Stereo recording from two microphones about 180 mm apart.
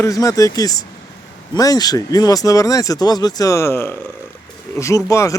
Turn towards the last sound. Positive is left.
turn(degrees=15)  # may be behind; listen again after turning